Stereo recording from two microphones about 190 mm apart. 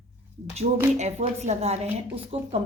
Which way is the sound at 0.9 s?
35° right (ahead or behind).